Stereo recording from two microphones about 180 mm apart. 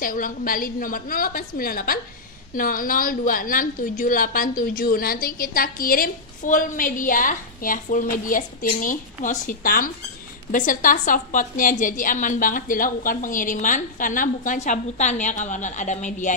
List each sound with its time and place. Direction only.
0.0 s a woman's voice: 50° left (ahead or behind)